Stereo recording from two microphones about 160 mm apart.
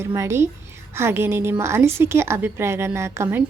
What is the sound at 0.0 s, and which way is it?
A woman's voice, 20° right (ahead or behind).